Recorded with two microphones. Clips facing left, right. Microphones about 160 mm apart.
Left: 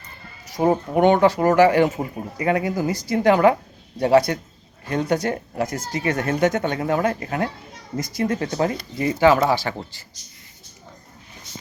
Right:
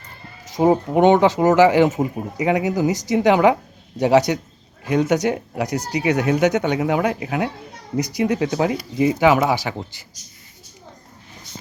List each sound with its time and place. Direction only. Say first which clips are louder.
0.5 s a woman's voice: right 3 dB; 15° right (ahead or behind)